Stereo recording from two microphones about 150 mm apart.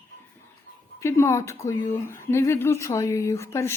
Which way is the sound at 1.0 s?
15° left (ahead or behind).